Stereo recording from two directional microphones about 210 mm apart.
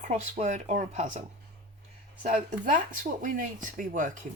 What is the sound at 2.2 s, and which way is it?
Speech, 35° right (ahead or behind).